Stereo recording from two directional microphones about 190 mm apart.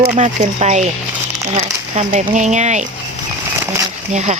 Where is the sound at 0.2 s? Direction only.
35° right (ahead or behind).